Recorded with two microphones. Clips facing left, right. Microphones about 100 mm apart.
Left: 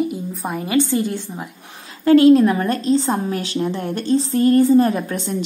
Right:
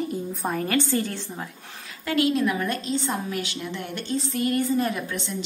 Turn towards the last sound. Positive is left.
turn(degrees=35)  # may be behind; listen again after turning